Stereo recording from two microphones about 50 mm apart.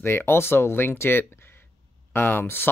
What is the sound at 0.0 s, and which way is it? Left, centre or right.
Speech, left.